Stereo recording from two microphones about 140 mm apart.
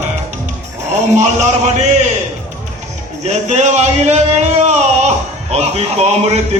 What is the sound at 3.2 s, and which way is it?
Speech, 55° right (ahead or behind).